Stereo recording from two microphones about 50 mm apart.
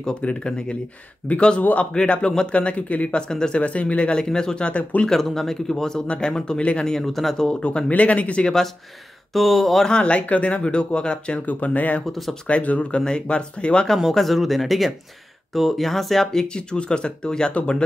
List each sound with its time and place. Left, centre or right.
0.0 s speech: left
1.6 s speech: left
2.0 s speech: centre
3.6 s speech: left
5.1 s speech: centre
6.9 s speech: centre
7.4 s speech: centre
7.9 s speech: left
9.3 s speech: centre
9.8 s speech: left
11.4 s speech: left
12.1 s speech: centre
12.4 s speech: left
14.1 s speech: centre